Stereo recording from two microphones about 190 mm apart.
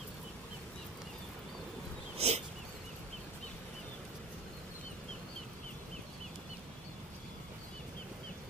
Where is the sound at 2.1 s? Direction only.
35° right (ahead or behind).